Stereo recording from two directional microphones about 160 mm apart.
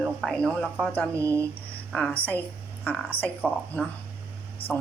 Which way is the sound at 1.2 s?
15° right (ahead or behind).